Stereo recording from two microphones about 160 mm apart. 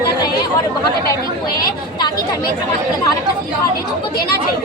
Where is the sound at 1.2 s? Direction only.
70° left (ahead or behind).